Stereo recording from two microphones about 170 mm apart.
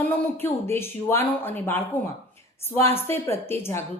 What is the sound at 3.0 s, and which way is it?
Speech, 15° left (ahead or behind).